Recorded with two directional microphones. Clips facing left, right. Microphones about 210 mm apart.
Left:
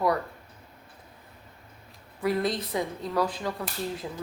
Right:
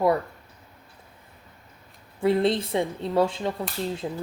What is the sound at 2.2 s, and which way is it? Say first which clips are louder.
A woman's voice: right 5 dB; 25° right (ahead or behind).